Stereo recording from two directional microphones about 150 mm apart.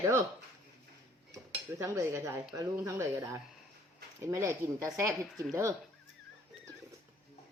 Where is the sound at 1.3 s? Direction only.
20° right (ahead or behind).